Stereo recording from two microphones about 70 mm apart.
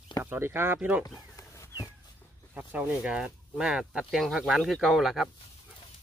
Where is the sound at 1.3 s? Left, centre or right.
Left.